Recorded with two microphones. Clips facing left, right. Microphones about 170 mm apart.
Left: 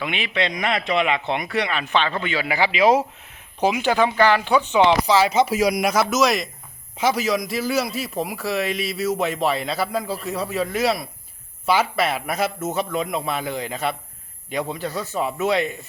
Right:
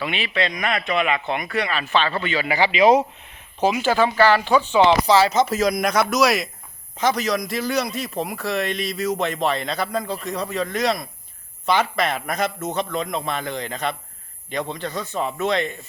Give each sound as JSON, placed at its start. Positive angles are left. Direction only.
{"t": 0.0, "sound": "speech", "side_deg": 15}
{"t": 3.6, "sound": "a man's voice", "side_deg": 15}